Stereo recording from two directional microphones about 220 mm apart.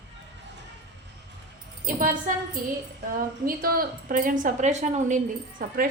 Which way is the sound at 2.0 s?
40° right (ahead or behind).